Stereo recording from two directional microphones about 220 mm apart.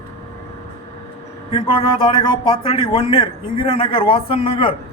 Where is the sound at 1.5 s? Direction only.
25° left (ahead or behind).